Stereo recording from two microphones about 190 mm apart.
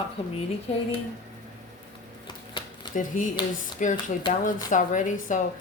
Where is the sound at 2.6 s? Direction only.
25° left (ahead or behind).